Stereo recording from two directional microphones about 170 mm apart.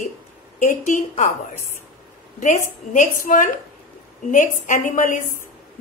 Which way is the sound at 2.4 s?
45° left (ahead or behind).